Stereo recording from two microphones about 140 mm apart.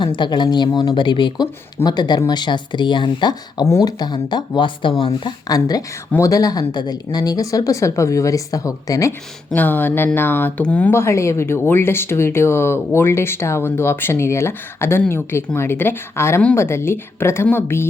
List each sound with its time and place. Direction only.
0.0 s speech: 35° left (ahead or behind)
5.5 s speech: 25° left (ahead or behind)